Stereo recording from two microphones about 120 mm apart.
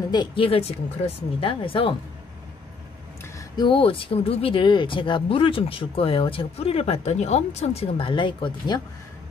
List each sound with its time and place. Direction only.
0.1 s speech: 40° left (ahead or behind)
3.3 s speech: 40° left (ahead or behind); by 8.1 s 60° left (ahead or behind)
8.1 s speech: 40° left (ahead or behind)